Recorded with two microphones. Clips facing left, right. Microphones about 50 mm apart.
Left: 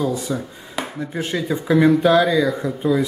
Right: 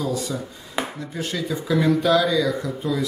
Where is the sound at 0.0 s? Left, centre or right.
Left.